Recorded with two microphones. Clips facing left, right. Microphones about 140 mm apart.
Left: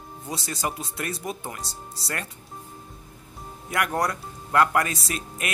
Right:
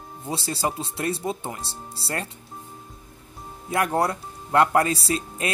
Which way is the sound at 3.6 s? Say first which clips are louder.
Right 3 dB; 30° right (ahead or behind).